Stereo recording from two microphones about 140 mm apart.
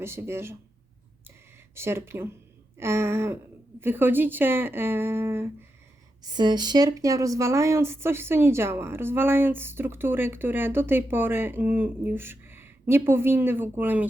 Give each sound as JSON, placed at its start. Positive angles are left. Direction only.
{"t": 0.0, "sound": "speech", "side_deg": -20}
{"t": 1.7, "sound": "speech", "side_deg": -20}
{"t": 2.7, "sound": "a sound", "side_deg": -20}
{"t": 3.8, "sound": "speech", "side_deg": -15}
{"t": 6.2, "sound": "speech", "side_deg": -30}